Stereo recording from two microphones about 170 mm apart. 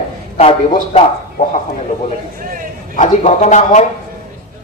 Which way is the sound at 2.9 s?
45° left (ahead or behind).